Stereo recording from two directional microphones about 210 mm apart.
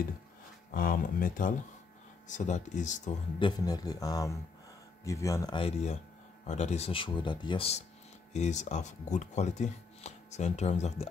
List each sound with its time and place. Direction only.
0.7 s speech: 45° left (ahead or behind)
3.3 s speech: 20° left (ahead or behind)